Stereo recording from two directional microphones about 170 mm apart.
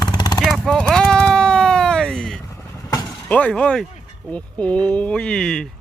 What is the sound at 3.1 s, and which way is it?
Speech, 10° left (ahead or behind).